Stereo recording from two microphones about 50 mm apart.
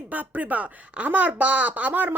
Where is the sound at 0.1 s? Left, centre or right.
Right.